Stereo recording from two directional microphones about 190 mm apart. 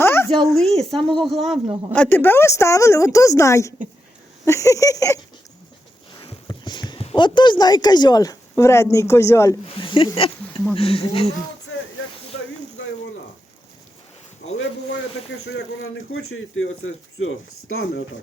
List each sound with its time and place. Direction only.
0.0 s a sound: 10° left (ahead or behind)
0.5 s speech: centre (ahead or behind)
9.6 s speech: 25° left (ahead or behind)
14.5 s a man's voice: 85° left